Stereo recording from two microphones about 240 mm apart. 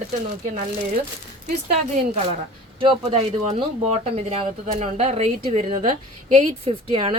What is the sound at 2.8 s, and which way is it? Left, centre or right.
A woman's voice, right.